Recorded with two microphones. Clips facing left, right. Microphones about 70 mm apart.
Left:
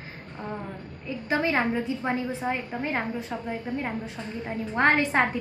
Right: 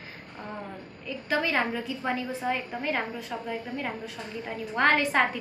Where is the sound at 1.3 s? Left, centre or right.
Left.